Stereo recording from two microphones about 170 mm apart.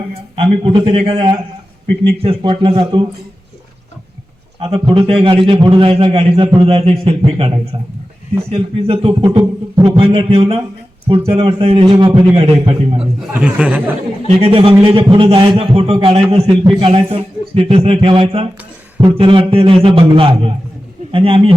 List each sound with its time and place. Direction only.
0.3 s a man's voice: 35° right (ahead or behind)
4.6 s a man's voice: 30° right (ahead or behind)
10.0 s a man's voice: 30° right (ahead or behind)
13.0 s speech: 5° right (ahead or behind)
14.3 s a man's voice: 35° right (ahead or behind)